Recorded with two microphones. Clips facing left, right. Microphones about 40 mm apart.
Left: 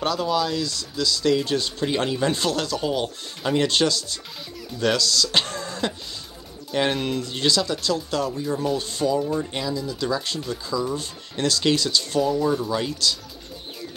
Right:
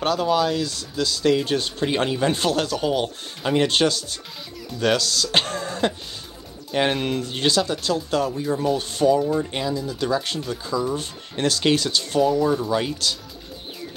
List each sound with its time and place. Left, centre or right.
0.0 s speech: right
2.3 s speech: right
8.7 s speech: right
9.5 s speech: right
9.8 s speech: right